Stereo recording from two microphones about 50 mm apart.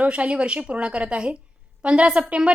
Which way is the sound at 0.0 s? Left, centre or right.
Right.